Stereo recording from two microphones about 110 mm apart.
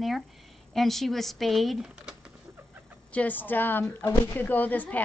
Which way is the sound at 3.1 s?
15° left (ahead or behind).